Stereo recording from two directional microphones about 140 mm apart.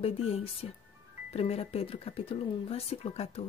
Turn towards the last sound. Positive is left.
turn(degrees=45)  # may be behind; listen again after turning